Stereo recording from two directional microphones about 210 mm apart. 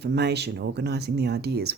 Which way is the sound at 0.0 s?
55° right (ahead or behind).